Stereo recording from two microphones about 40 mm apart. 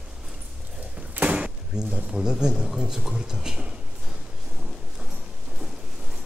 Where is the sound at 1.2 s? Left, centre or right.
Right.